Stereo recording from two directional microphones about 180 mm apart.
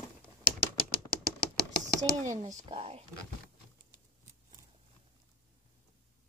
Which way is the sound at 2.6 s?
35° right (ahead or behind).